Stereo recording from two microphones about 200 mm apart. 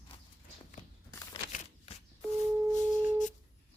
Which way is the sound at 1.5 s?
40° left (ahead or behind).